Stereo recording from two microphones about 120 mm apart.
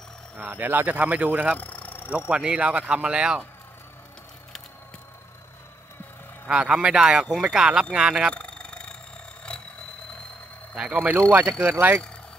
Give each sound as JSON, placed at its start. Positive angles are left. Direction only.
{"t": 0.4, "sound": "speech", "side_deg": -15}
{"t": 1.6, "sound": "vehicle", "side_deg": 15}
{"t": 2.1, "sound": "speech", "side_deg": -10}
{"t": 6.4, "sound": "speech", "side_deg": -10}
{"t": 8.3, "sound": "a sound", "side_deg": 10}
{"t": 10.7, "sound": "speech", "side_deg": -10}